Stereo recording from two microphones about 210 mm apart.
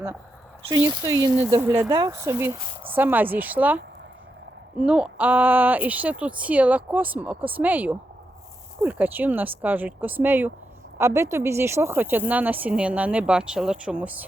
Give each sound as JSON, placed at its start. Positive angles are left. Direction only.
{"t": 0.7, "sound": "speech", "side_deg": -20}
{"t": 4.8, "sound": "speech", "side_deg": -5}